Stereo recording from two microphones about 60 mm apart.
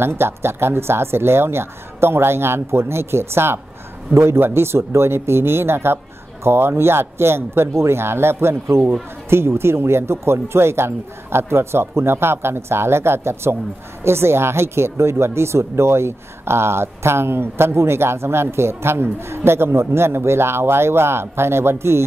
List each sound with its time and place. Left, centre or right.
0.0 s a woman's voice: right